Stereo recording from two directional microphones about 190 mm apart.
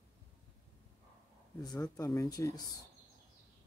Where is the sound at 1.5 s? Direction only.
20° left (ahead or behind).